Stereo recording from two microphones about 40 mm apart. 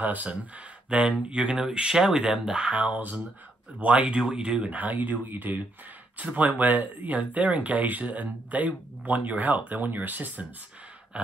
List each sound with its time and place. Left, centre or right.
0.0 s speech: right
0.8 s speech: right
2.3 s speech: right
4.1 s speech: right
4.6 s speech: right